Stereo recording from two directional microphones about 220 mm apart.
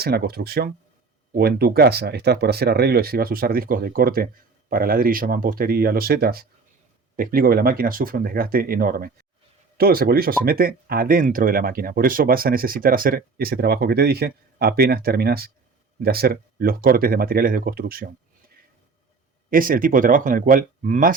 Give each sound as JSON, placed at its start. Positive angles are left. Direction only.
{"t": 0.0, "sound": "speech", "side_deg": -45}
{"t": 19.5, "sound": "speech", "side_deg": -40}